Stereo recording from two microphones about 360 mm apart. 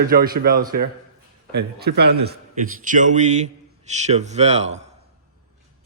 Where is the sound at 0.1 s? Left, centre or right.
Right.